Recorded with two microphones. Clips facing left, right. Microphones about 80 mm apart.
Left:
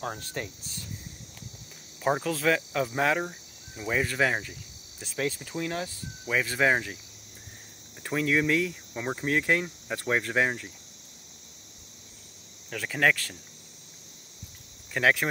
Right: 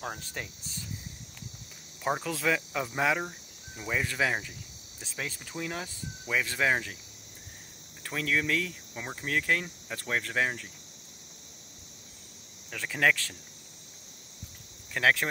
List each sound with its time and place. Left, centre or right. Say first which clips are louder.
0.0 s cricket: left 3 dB; centre
2.2 s cricket: left 3 dB; centre
8.0 s cricket: left 4 dB; centre
12.6 s cricket: left 2 dB; centre
15.0 s cricket: left 1 dB; centre